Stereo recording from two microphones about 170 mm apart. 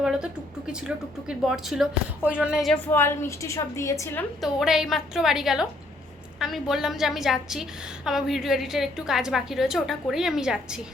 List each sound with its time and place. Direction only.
0.0 s a sound: 5° right (ahead or behind)
0.7 s a woman's voice: 5° right (ahead or behind)
2.8 s a woman's voice: 15° left (ahead or behind)
4.4 s a woman's voice: centre (ahead or behind)